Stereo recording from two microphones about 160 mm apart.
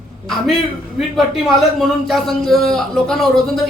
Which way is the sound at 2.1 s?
Centre (ahead or behind).